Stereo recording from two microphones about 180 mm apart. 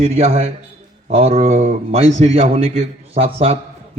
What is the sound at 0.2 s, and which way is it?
A man's voice, 35° right (ahead or behind).